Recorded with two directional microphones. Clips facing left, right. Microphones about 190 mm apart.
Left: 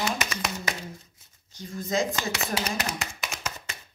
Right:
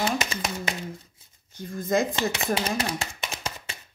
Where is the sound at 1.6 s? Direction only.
55° right (ahead or behind).